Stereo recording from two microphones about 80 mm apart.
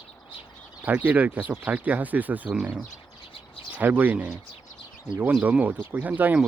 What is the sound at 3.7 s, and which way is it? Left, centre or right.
Speech, right.